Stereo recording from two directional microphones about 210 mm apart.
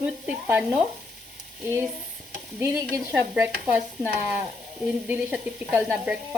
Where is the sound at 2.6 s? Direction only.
10° right (ahead or behind).